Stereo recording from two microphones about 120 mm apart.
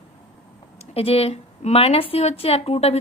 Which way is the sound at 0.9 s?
55° left (ahead or behind).